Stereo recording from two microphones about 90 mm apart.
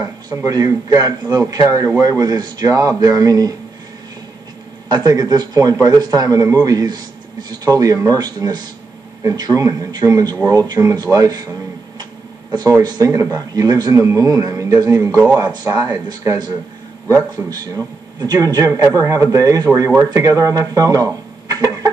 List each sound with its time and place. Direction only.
0.0 s a man's voice: 40° right (ahead or behind)
4.8 s a man's voice: 50° right (ahead or behind)
12.0 s tick-tock: 50° right (ahead or behind)
12.8 s a man's voice: 50° right (ahead or behind)
13.1 s a man's voice: 35° right (ahead or behind)
21.5 s chicken: 45° right (ahead or behind)